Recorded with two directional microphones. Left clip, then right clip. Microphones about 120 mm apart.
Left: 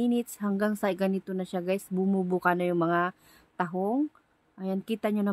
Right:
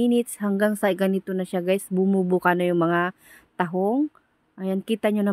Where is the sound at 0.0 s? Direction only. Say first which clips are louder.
Right 7 dB; 30° right (ahead or behind).